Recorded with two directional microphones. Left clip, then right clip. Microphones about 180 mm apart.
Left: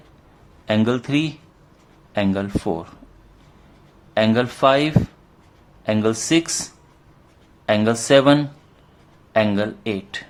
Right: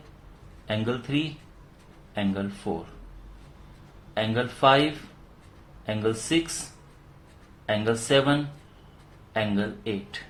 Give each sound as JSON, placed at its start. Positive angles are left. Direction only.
{"t": 0.7, "sound": "speech", "side_deg": 40}
{"t": 4.1, "sound": "speech", "side_deg": 35}
{"t": 5.8, "sound": "speech", "side_deg": 40}
{"t": 7.7, "sound": "speech", "side_deg": 40}